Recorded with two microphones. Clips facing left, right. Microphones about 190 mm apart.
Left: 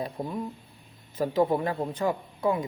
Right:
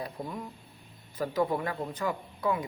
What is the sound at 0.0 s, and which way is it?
Speech, 25° left (ahead or behind).